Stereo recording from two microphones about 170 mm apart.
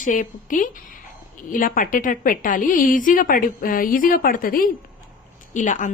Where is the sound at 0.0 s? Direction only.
50° left (ahead or behind).